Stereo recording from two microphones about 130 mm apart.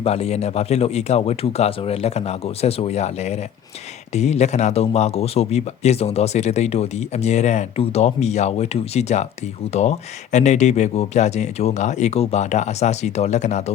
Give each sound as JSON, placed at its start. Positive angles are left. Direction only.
{"t": 0.0, "sound": "speech", "side_deg": 55}